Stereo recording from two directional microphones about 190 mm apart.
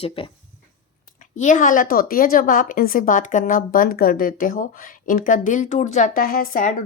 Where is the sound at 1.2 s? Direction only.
40° left (ahead or behind).